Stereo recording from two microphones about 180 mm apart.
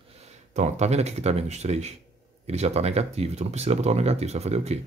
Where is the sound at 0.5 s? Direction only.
40° right (ahead or behind).